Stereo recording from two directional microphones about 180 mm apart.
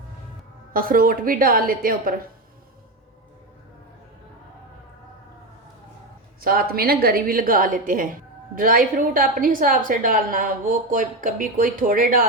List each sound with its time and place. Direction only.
0.7 s a woman's voice: 55° right (ahead or behind)
6.4 s a woman's voice: 55° right (ahead or behind)